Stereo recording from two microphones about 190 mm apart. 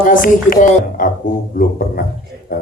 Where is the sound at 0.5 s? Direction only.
45° left (ahead or behind).